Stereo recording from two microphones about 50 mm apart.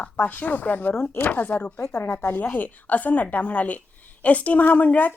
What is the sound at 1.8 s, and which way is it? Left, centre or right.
A woman's voice, left.